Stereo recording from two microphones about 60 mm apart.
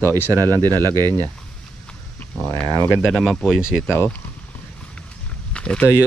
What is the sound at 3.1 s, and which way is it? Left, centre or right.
Speech, centre.